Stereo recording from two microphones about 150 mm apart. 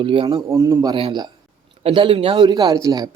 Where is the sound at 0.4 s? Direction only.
20° right (ahead or behind).